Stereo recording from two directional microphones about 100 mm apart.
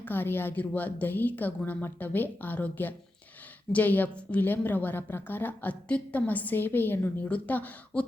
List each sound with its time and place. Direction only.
0.0 s a woman's voice: 20° left (ahead or behind)